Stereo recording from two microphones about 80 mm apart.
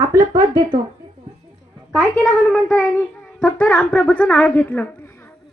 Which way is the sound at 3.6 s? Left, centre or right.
Centre.